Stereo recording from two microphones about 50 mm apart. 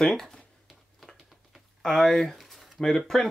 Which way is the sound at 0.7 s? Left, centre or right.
Centre.